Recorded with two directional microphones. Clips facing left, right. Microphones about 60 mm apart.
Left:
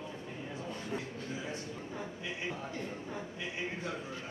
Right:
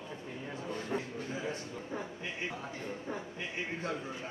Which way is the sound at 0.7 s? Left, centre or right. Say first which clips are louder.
Right 5 dB; right.